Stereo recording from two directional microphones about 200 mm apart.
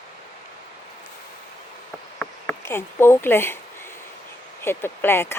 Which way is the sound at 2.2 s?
10° left (ahead or behind).